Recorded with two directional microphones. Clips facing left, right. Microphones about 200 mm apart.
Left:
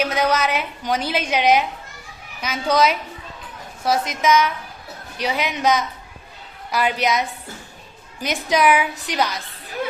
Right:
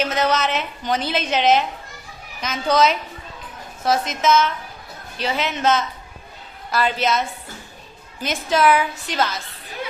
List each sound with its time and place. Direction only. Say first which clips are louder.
0.0 s a woman's voice: even; 10° left (ahead or behind)